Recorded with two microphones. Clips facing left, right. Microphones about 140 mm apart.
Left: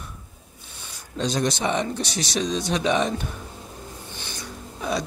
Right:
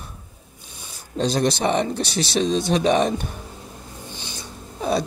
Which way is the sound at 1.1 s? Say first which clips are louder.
Right 4 dB; 30° right (ahead or behind).